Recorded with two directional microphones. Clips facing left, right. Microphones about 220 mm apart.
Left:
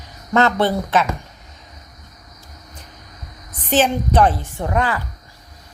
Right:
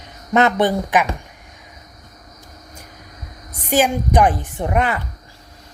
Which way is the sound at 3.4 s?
10° right (ahead or behind).